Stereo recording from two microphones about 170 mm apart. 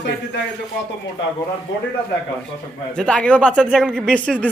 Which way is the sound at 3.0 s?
5° left (ahead or behind).